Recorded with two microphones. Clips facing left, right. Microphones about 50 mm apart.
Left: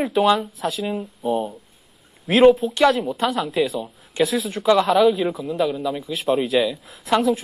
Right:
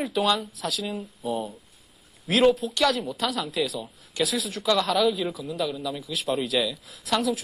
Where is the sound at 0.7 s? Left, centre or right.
Centre.